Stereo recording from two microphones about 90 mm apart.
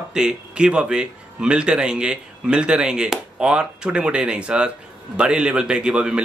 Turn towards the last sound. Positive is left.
turn(degrees=-10)  # may be behind; listen again after turning